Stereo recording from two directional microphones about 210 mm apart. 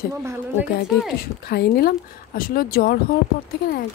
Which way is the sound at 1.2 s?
50° left (ahead or behind).